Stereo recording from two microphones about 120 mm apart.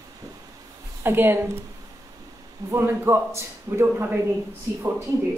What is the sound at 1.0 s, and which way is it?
Speech, 20° right (ahead or behind).